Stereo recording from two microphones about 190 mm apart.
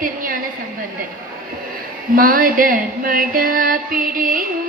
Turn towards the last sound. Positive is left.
turn(degrees=-45)  # may be behind; listen again after turning